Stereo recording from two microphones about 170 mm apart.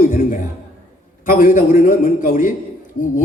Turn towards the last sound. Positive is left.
turn(degrees=30)  # may be behind; listen again after turning